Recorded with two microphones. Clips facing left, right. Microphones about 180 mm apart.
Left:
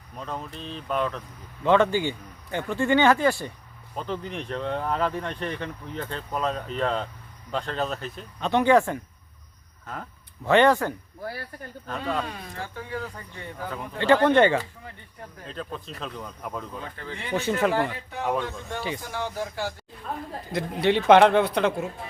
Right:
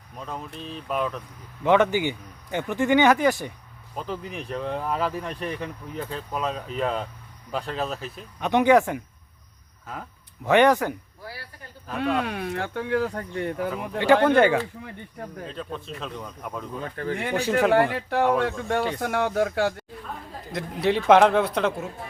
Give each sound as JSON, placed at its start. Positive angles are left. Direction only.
{"t": 0.2, "sound": "speech", "side_deg": 0}
{"t": 1.6, "sound": "speech", "side_deg": -15}
{"t": 3.9, "sound": "speech", "side_deg": -5}
{"t": 8.4, "sound": "speech", "side_deg": -15}
{"t": 9.8, "sound": "speech", "side_deg": -5}
{"t": 10.4, "sound": "speech", "side_deg": -15}
{"t": 11.2, "sound": "speech", "side_deg": 50}
{"t": 11.9, "sound": "speech", "side_deg": -70}
{"t": 14.0, "sound": "speech", "side_deg": -10}
{"t": 17.0, "sound": "speech", "side_deg": -55}
{"t": 17.9, "sound": "speech", "side_deg": -75}
{"t": 20.5, "sound": "speech", "side_deg": 0}